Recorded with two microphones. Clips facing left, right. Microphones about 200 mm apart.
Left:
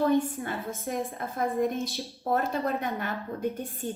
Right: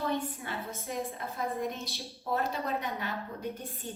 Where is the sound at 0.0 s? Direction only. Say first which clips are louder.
Left 8 dB; 50° left (ahead or behind).